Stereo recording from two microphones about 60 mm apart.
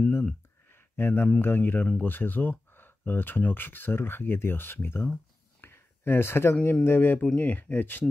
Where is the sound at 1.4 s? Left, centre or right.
Left.